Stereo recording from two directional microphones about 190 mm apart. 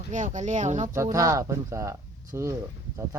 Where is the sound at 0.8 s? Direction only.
15° right (ahead or behind).